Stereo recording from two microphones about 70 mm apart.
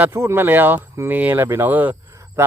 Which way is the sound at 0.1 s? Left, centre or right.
Right.